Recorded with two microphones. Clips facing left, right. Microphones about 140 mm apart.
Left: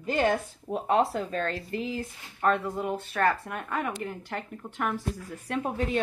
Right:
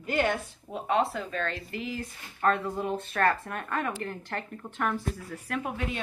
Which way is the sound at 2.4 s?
10° left (ahead or behind).